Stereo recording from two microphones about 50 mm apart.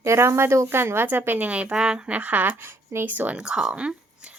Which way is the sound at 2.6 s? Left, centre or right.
Right.